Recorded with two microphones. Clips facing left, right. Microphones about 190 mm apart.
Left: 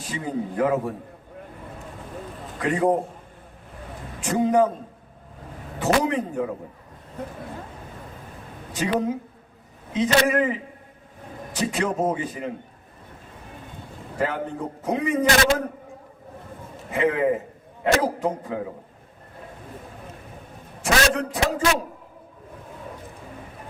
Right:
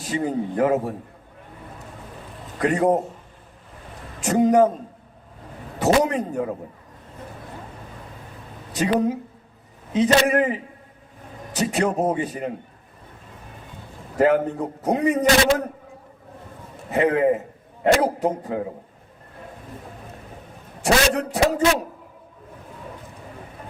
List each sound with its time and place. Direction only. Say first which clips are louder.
0.0 s a man's voice: right 4 dB; 40° right (ahead or behind)
2.6 s a man's voice: right 2 dB; 40° right (ahead or behind)
4.2 s a man's voice: right 3 dB; 40° right (ahead or behind)
5.8 s a man's voice: right 3 dB; 40° right (ahead or behind)
8.7 s a man's voice: right 3 dB; 35° right (ahead or behind)
14.2 s a man's voice: right 8 dB; 40° right (ahead or behind)
16.9 s a man's voice: right 3 dB; 40° right (ahead or behind)
20.8 s a man's voice: right 2 dB; 35° right (ahead or behind)